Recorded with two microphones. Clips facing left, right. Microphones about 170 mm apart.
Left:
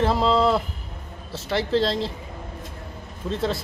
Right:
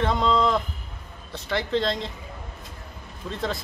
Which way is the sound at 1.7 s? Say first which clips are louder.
Left 4 dB; 30° left (ahead or behind).